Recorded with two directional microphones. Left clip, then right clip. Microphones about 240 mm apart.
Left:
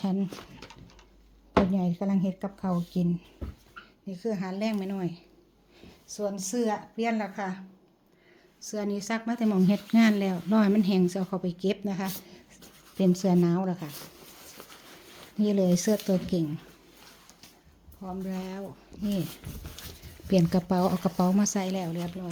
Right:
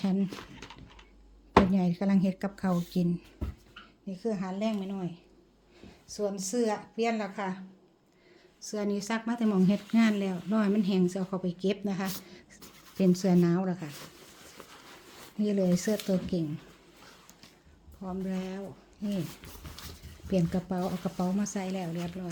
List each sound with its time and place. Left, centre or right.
0.0 s a sound: centre
1.6 s a woman's voice: centre
4.2 s a woman's voice: centre
8.6 s a woman's voice: centre
14.6 s a sound: centre
15.4 s speech: centre
18.0 s speech: centre
20.2 s speech: left